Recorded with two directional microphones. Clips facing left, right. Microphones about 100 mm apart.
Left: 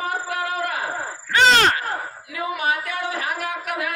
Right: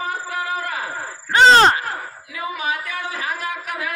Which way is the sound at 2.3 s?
65° left (ahead or behind).